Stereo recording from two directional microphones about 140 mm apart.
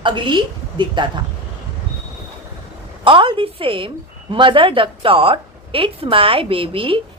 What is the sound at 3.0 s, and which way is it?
Speech, 35° right (ahead or behind).